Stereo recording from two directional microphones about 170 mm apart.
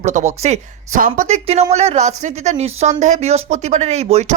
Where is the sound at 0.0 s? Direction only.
45° right (ahead or behind).